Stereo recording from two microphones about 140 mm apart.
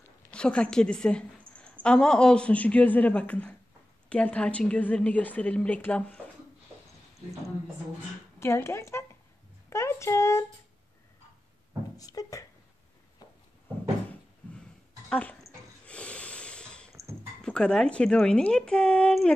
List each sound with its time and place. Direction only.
0.3 s a woman's voice: 5° left (ahead or behind)
8.4 s a woman's voice: 20° left (ahead or behind)
12.0 s speech: 25° left (ahead or behind)
13.2 s a sound: 30° left (ahead or behind)
15.0 s speech: 10° left (ahead or behind)
15.4 s snort: 10° left (ahead or behind)
16.9 s music: 20° right (ahead or behind)
17.4 s a woman's voice: 5° left (ahead or behind)